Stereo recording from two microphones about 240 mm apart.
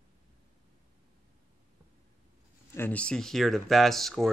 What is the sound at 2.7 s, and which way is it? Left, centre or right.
Speech, centre.